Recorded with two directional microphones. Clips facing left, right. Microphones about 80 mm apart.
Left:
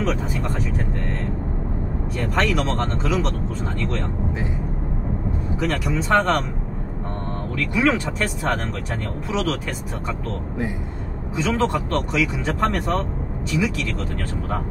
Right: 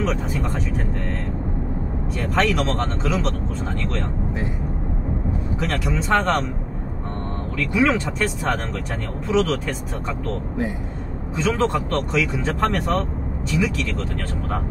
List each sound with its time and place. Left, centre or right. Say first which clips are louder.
0.0 s speech: even; centre
2.1 s speech: right 1 dB; centre
5.6 s speech: left 2 dB; centre
7.5 s speech: right 1 dB; centre